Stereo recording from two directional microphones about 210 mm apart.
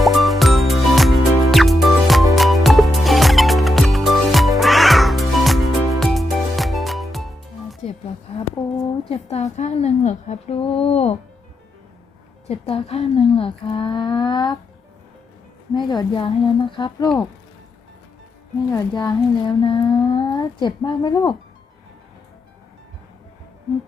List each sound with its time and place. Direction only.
0.0 s music: centre (ahead or behind)
8.3 s a sound: 30° left (ahead or behind)
12.5 s speech: 30° left (ahead or behind)
15.7 s speech: 20° left (ahead or behind)
18.7 s speech: 15° left (ahead or behind)